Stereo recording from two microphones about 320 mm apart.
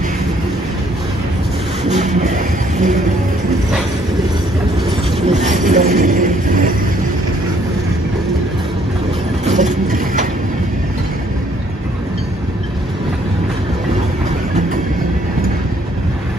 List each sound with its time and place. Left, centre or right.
1.9 s vehicle: right
5.2 s a sound: right
9.5 s train: right